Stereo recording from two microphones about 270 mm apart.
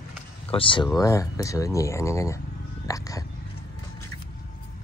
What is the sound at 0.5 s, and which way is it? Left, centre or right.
Speech, centre.